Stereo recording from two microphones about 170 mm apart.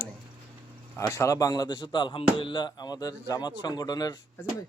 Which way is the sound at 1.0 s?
20° left (ahead or behind).